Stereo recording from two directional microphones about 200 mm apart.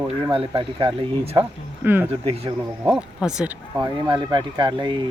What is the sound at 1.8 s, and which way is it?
Speech, 10° right (ahead or behind).